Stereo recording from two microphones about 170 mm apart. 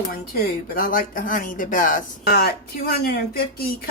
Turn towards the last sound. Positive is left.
turn(degrees=65)  # may be behind; listen again after turning